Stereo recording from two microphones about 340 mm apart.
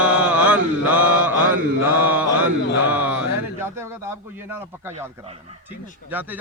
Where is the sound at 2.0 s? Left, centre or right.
Centre.